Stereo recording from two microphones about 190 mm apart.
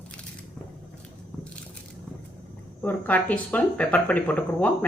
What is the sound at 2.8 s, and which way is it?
Speech, 10° left (ahead or behind).